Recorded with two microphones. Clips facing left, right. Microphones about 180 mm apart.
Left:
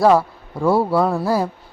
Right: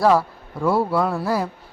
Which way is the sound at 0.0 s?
25° left (ahead or behind).